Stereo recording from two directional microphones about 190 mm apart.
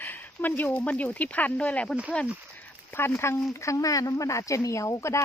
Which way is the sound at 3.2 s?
15° left (ahead or behind).